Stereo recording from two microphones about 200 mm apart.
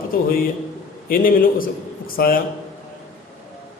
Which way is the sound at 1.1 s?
45° left (ahead or behind).